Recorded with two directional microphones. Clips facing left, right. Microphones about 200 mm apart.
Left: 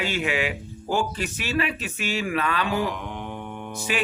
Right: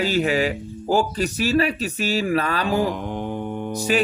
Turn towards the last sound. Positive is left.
turn(degrees=-40)  # may be behind; listen again after turning